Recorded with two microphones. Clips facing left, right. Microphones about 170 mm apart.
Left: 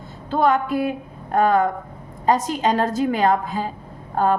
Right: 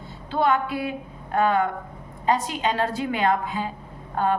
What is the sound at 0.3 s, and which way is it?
A woman's voice, 45° left (ahead or behind).